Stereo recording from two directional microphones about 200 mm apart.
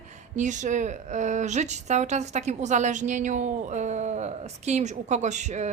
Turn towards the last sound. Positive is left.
turn(degrees=-35)  # may be behind; listen again after turning